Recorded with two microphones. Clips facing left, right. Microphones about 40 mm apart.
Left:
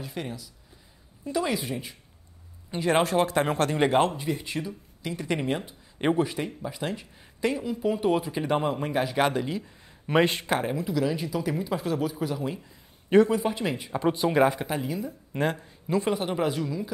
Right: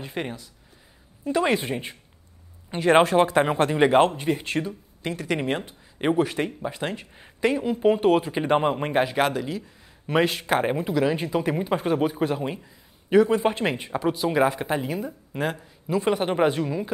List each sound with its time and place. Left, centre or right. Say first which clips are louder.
0.0 s speech: right 4 dB; right
4.0 s speech: right 4 dB; right
5.1 s speech: right 2 dB; centre
5.4 s speech: right 2 dB; right
6.1 s speech: right 3 dB; right
6.7 s speech: right 2 dB; right
9.3 s speech: even; centre
10.6 s speech: right 4 dB; right
14.1 s speech: even; centre
14.6 s speech: right 4 dB; centre
14.9 s speech: right 2 dB; right
15.5 s speech: right 1 dB; centre
16.1 s speech: right 9 dB; right